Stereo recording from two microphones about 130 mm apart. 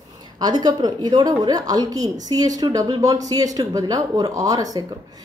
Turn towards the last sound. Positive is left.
turn(degrees=-30)  # may be behind; listen again after turning